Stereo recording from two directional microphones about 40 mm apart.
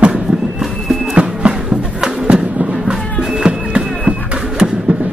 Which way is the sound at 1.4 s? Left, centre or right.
Right.